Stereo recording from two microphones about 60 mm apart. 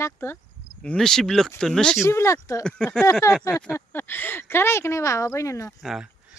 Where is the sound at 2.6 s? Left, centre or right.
Centre.